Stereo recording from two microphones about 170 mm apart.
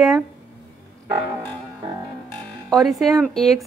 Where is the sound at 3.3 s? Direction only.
Centre (ahead or behind).